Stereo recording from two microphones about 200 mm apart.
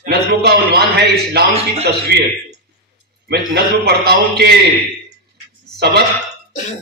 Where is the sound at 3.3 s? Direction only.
55° right (ahead or behind).